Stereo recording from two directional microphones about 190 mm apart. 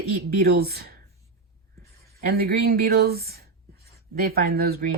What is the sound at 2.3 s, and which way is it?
Speech, 55° right (ahead or behind).